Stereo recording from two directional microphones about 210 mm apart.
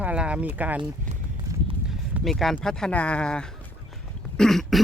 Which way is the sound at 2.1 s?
Centre (ahead or behind).